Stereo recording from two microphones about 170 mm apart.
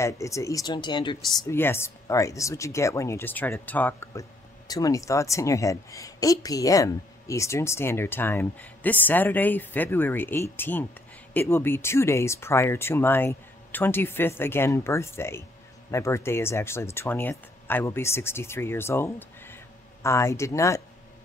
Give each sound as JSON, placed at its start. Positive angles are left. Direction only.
{"t": 0.0, "sound": "speech", "side_deg": 20}
{"t": 1.4, "sound": "speech", "side_deg": 15}